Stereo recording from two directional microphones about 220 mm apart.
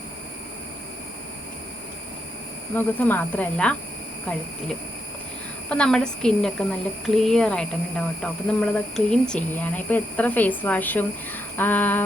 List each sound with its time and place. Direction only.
2.7 s a woman's voice: 10° left (ahead or behind)
5.6 s a woman's voice: 5° left (ahead or behind)